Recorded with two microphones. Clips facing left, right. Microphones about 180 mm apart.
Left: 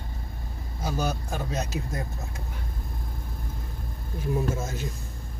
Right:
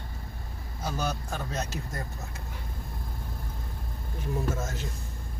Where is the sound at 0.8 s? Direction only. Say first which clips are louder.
Left 3 dB; 10° left (ahead or behind).